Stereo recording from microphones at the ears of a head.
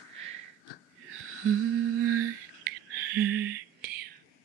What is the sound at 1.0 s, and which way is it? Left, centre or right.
Humming, right.